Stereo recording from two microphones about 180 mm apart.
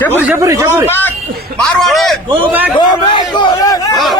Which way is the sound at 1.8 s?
Centre (ahead or behind).